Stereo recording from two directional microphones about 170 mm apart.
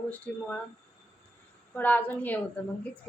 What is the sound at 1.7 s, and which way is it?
Speech, 10° left (ahead or behind).